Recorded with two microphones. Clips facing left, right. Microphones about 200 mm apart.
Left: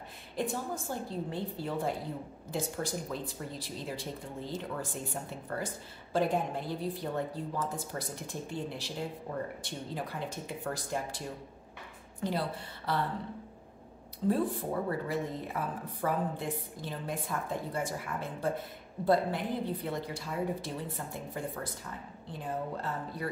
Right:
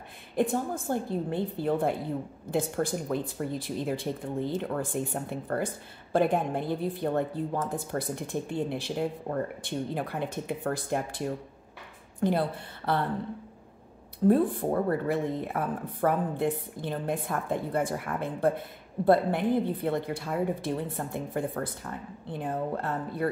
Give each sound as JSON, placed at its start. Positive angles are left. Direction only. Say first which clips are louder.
{"t": 0.4, "sound": "a woman's voice", "louder": "right 7 dB", "side_deg": -55}
{"t": 14.2, "sound": "a woman's voice", "louder": "right 7 dB", "side_deg": -55}